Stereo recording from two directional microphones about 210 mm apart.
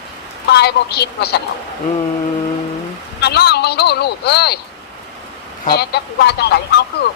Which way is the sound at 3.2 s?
50° left (ahead or behind).